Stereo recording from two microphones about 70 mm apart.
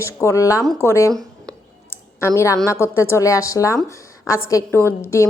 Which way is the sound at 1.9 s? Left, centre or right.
Left.